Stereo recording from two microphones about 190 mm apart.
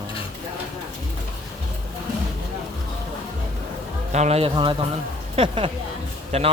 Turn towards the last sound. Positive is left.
turn(degrees=-35)  # may be behind; listen again after turning